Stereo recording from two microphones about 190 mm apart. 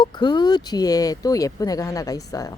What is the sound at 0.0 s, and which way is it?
Speech, 20° left (ahead or behind).